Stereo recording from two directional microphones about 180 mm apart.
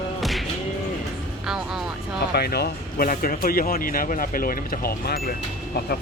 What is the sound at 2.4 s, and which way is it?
Speech, 60° left (ahead or behind).